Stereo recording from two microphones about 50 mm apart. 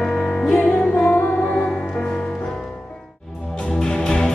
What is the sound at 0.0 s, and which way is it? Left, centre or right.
Music, centre.